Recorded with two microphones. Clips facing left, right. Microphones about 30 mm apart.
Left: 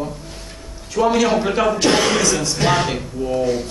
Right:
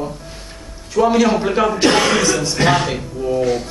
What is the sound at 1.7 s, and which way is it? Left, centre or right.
Speech, centre.